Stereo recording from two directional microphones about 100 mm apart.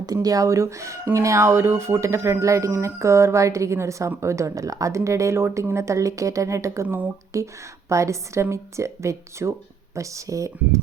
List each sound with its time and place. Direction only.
0.0 s speech: 40° right (ahead or behind)
6.8 s speech: 15° right (ahead or behind)
7.3 s speech: 30° right (ahead or behind)